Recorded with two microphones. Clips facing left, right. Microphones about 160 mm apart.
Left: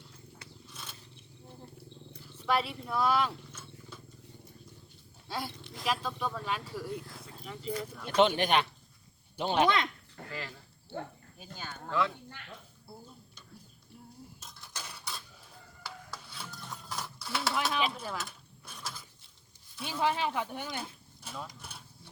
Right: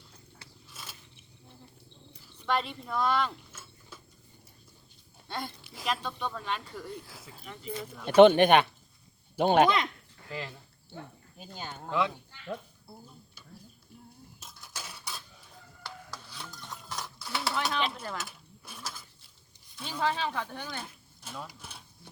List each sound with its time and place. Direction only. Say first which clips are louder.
0.7 s biting: right 2 dB; 5° right (ahead or behind)
2.5 s speech: even; 5° left (ahead or behind)
3.5 s roaring cats: left 3 dB; 5° right (ahead or behind)
5.3 s speech: even; 5° left (ahead or behind)
8.0 s speech: right 9 dB; 60° right (ahead or behind)
9.6 s speech: right 1 dB; centre (ahead or behind)
10.2 s speech: right 3 dB; 20° right (ahead or behind)
11.6 s speech: right 2 dB; 15° right (ahead or behind)
12.4 s a sound: right 6 dB; 60° left (ahead or behind)
14.4 s cutlery: right 3 dB; centre (ahead or behind)
15.8 s a sound: right 1 dB; 5° left (ahead or behind)
19.8 s speech: even; 15° left (ahead or behind)
20.7 s a sound: left 2 dB; centre (ahead or behind)